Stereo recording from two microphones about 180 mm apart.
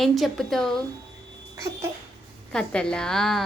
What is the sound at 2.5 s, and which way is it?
Speech, 5° left (ahead or behind).